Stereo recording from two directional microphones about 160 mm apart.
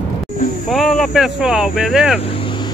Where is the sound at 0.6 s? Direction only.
Centre (ahead or behind).